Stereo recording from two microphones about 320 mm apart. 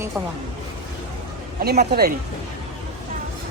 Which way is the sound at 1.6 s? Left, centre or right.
Right.